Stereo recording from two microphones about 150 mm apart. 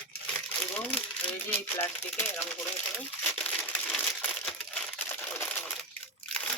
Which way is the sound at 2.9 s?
10° left (ahead or behind).